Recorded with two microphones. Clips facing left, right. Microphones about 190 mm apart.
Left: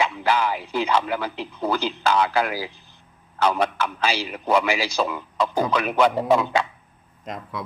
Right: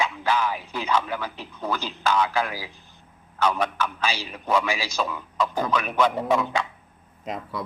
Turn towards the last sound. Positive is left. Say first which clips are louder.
# right 1 dB
turn(degrees=0)  # may be behind; listen again after turning